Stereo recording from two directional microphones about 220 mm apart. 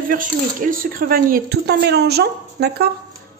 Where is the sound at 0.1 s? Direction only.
40° right (ahead or behind).